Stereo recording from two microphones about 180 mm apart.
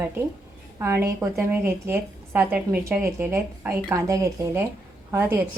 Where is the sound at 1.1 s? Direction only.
15° right (ahead or behind).